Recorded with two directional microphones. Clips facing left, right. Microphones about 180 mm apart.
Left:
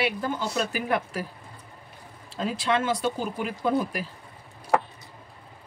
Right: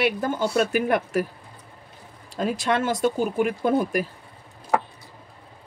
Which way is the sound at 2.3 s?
45° right (ahead or behind).